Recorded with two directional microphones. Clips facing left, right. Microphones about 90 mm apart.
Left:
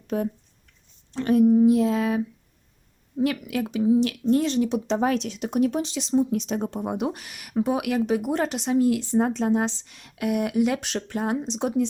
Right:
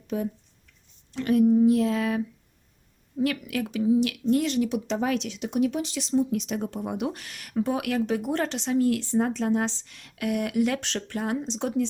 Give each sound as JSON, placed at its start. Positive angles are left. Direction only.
{"t": 0.1, "sound": "speech", "side_deg": 55}
{"t": 1.1, "sound": "a woman's voice", "side_deg": 30}
{"t": 1.5, "sound": "a woman's voice", "side_deg": 20}
{"t": 5.8, "sound": "speech", "side_deg": 25}